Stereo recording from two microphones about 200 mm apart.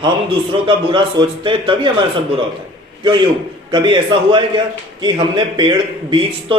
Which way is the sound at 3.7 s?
25° right (ahead or behind).